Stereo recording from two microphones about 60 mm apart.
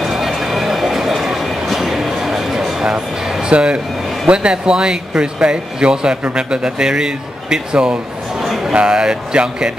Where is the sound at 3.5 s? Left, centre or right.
Centre.